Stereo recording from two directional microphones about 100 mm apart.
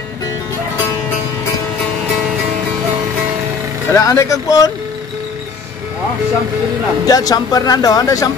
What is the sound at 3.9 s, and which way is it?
Speech, 30° left (ahead or behind).